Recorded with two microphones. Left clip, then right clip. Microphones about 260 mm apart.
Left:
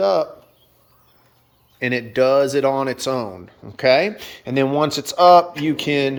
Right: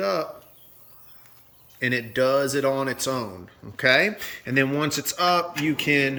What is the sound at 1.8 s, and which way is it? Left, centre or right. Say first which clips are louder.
Speech: left 5 dB; centre.